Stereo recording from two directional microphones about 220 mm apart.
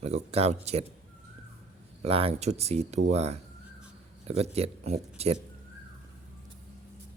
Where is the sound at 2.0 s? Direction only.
25° right (ahead or behind).